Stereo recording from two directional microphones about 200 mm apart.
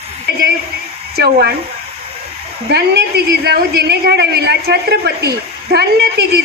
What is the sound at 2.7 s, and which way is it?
A woman's voice, 55° right (ahead or behind).